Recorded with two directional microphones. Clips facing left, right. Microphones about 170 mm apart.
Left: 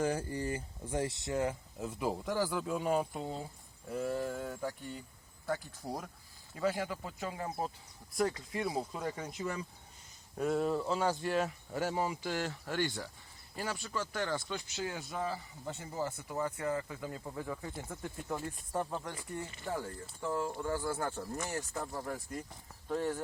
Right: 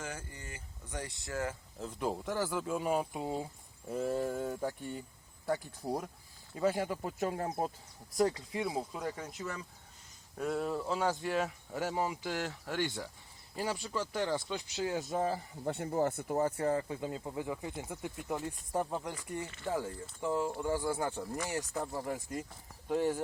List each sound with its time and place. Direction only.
0.0 s speech: 35° left (ahead or behind)
1.8 s speech: 5° left (ahead or behind)
3.9 s a man's voice: 35° right (ahead or behind)
6.7 s speech: 40° right (ahead or behind)
8.1 s speech: 30° right (ahead or behind)
8.6 s speech: centre (ahead or behind)
13.6 s a man's voice: 25° right (ahead or behind)
14.3 s speech: 10° right (ahead or behind)
14.9 s speech: 45° right (ahead or behind); by 21.2 s 15° right (ahead or behind)
21.6 s speech: centre (ahead or behind)
21.9 s a man's voice: 15° right (ahead or behind)